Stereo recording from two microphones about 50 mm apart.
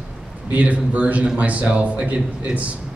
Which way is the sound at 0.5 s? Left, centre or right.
Right.